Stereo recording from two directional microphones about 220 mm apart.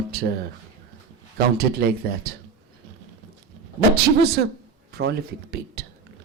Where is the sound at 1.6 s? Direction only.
45° right (ahead or behind).